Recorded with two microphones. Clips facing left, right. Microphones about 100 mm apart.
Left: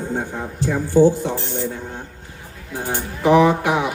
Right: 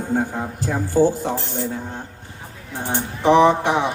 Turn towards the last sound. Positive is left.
turn(degrees=-30)  # may be behind; listen again after turning